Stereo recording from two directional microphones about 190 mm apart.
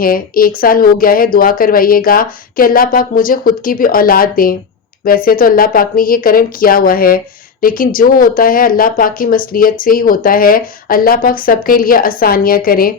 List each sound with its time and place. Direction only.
0.0 s a woman's voice: 50° left (ahead or behind)